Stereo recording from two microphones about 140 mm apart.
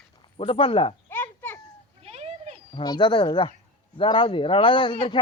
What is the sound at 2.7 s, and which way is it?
A man's voice, 30° left (ahead or behind).